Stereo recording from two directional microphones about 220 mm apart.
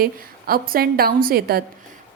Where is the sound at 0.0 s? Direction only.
45° right (ahead or behind).